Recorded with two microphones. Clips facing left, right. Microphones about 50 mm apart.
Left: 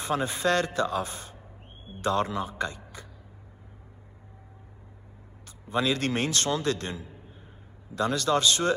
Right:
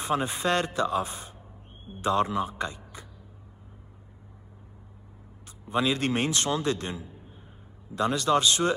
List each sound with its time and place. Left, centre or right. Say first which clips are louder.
0.0 s a man's voice: even; right
5.7 s a man's voice: right 1 dB; right